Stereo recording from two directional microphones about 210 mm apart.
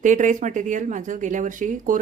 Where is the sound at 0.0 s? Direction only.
35° right (ahead or behind).